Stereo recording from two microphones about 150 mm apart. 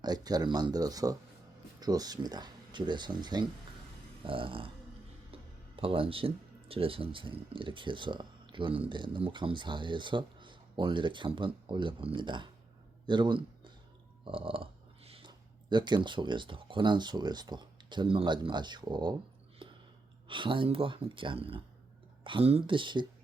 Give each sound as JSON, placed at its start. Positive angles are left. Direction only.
{"t": 0.0, "sound": "speech", "side_deg": -25}
{"t": 14.3, "sound": "burping", "side_deg": -35}
{"t": 15.3, "sound": "speech", "side_deg": -30}
{"t": 19.6, "sound": "a sound", "side_deg": -35}
{"t": 20.2, "sound": "speech", "side_deg": -35}